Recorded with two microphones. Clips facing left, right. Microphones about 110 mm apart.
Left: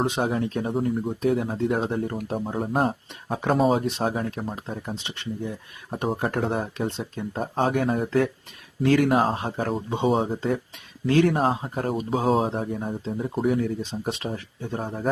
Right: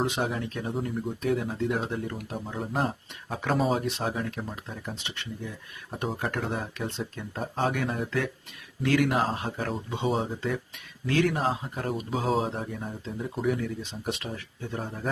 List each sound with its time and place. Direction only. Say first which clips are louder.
0.0 s speech: left 4 dB; 30° left (ahead or behind)
0.7 s speech: left 3 dB; 45° left (ahead or behind)
1.2 s speech: left 4 dB; 30° left (ahead or behind)
3.8 s speech: left 4 dB; 25° left (ahead or behind)
12.2 s speech: left 5 dB; 45° left (ahead or behind)
12.5 s speech: left 6 dB; 35° left (ahead or behind)